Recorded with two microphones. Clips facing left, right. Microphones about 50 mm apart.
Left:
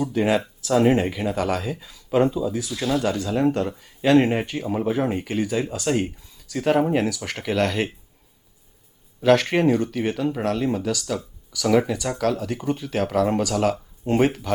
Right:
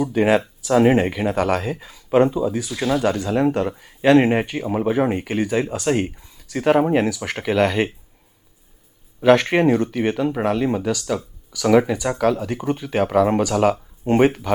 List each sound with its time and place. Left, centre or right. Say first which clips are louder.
0.0 s speech: right 4 dB; right
1.4 s speech: right 4 dB; right
1.6 s speech: right 3 dB; right
2.8 s speech: right 3 dB; centre
9.2 s speech: right 3 dB; centre